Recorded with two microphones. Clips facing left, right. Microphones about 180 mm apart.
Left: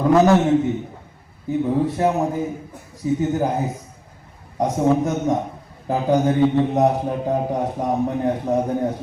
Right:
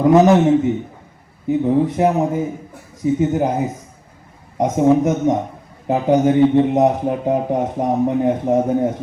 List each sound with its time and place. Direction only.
0.0 s a man's voice: 20° right (ahead or behind)
1.5 s a man's voice: 20° right (ahead or behind)
4.5 s a man's voice: 20° right (ahead or behind)